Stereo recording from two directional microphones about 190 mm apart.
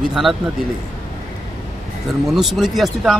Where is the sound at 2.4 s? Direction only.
Centre (ahead or behind).